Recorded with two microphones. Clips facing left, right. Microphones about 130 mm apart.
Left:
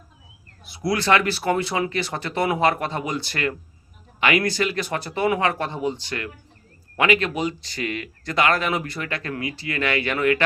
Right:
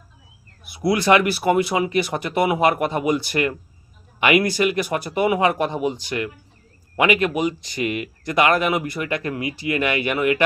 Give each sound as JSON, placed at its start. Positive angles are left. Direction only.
{"t": 0.6, "sound": "speech", "side_deg": -10}